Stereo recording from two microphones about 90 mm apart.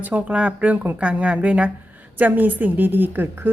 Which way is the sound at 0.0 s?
15° right (ahead or behind).